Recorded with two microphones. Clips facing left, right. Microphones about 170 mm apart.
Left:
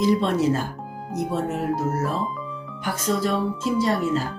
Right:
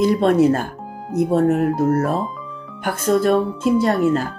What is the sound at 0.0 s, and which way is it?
Speech, 55° right (ahead or behind).